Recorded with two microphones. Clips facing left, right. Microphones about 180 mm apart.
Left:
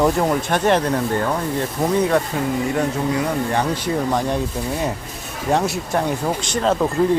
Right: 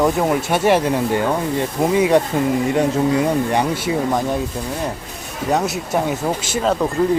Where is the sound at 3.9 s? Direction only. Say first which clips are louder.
Right 1 dB; centre (ahead or behind).